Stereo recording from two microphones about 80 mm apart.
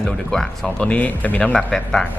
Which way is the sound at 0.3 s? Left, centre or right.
Centre.